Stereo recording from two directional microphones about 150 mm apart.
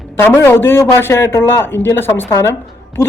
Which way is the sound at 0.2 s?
15° left (ahead or behind).